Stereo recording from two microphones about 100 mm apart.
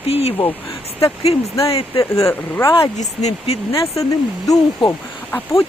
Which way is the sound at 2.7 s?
75° left (ahead or behind).